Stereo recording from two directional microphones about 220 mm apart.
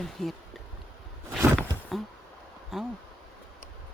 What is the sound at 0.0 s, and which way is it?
Speech, centre (ahead or behind).